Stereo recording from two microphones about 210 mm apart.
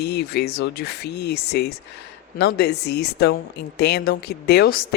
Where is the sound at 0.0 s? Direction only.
50° left (ahead or behind).